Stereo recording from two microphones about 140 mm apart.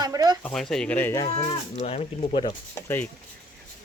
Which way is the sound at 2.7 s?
15° left (ahead or behind).